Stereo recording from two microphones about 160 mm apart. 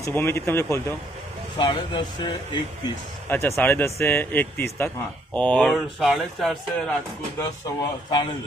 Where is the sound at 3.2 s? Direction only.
15° left (ahead or behind).